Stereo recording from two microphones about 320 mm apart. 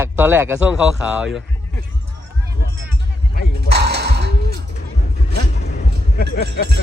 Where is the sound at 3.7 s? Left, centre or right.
Right.